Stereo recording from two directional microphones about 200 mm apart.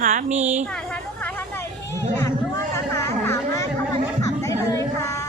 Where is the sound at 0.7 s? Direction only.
5° left (ahead or behind).